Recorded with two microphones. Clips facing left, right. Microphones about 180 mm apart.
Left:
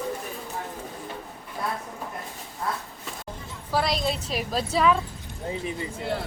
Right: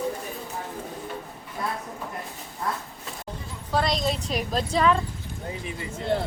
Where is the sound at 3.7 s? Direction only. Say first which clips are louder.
Right 1 dB; 5° left (ahead or behind).